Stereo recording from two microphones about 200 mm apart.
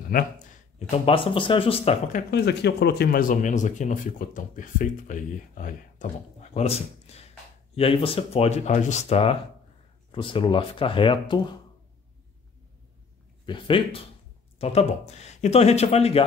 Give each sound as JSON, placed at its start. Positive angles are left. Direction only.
{"t": 0.7, "sound": "speech", "side_deg": 30}
{"t": 2.1, "sound": "speech", "side_deg": 55}
{"t": 6.5, "sound": "speech", "side_deg": 30}
{"t": 13.5, "sound": "speech", "side_deg": 25}